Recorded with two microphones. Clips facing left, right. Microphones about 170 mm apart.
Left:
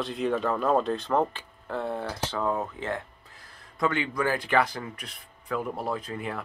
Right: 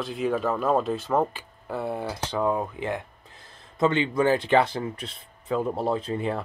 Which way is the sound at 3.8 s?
25° right (ahead or behind).